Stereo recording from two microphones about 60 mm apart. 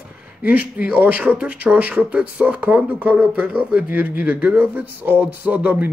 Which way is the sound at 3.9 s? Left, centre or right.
Right.